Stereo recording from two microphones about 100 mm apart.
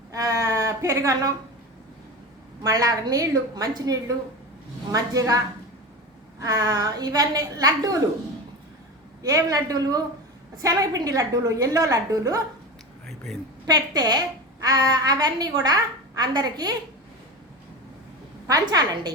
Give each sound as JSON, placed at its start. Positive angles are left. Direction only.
{"t": 0.1, "sound": "a sound", "side_deg": -35}
{"t": 2.6, "sound": "a woman's voice", "side_deg": -35}
{"t": 6.4, "sound": "a woman's voice", "side_deg": -35}
{"t": 9.2, "sound": "a woman's voice", "side_deg": -35}
{"t": 13.1, "sound": "a sound", "side_deg": 5}
{"t": 13.7, "sound": "a woman's voice", "side_deg": -40}
{"t": 18.4, "sound": "a woman's voice", "side_deg": -40}